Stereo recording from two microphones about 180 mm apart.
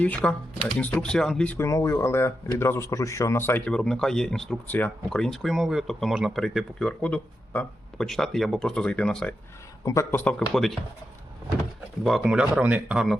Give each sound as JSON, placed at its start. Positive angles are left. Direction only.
{"t": 0.0, "sound": "speech", "side_deg": 10}
{"t": 1.5, "sound": "speech", "side_deg": 15}
{"t": 9.8, "sound": "speech", "side_deg": 15}
{"t": 12.0, "sound": "speech", "side_deg": 0}